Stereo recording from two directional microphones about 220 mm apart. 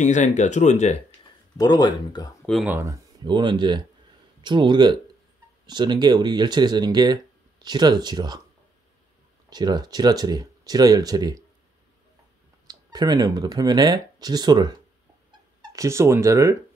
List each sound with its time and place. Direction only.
0.0 s speech: 35° left (ahead or behind)
1.6 s speech: 20° left (ahead or behind)
2.4 s speech: centre (ahead or behind)
2.7 s speech: 15° right (ahead or behind)
9.5 s speech: 20° right (ahead or behind)
12.6 s speech: 20° right (ahead or behind)